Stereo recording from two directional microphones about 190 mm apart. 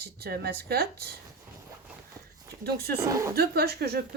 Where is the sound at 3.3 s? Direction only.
55° right (ahead or behind).